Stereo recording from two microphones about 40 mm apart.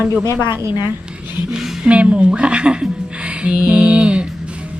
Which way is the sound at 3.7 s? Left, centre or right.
Right.